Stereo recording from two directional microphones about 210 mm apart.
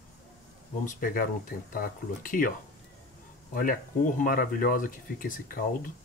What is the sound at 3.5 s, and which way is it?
Speech, 40° left (ahead or behind).